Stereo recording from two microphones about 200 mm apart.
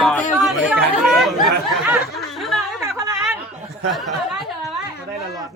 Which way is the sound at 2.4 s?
Centre (ahead or behind).